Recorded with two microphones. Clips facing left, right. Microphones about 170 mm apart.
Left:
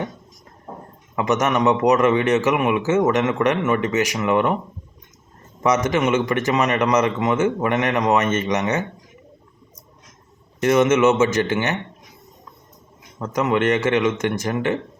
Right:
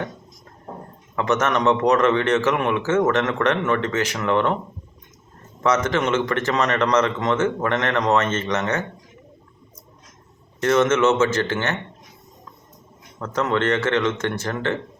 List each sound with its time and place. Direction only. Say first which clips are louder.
1.1 s a man's voice: left 1 dB; 15° left (ahead or behind)
5.6 s a man's voice: left 2 dB; 15° left (ahead or behind)
10.6 s a man's voice: left 2 dB; 15° left (ahead or behind)
13.1 s a man's voice: left 2 dB; 15° left (ahead or behind)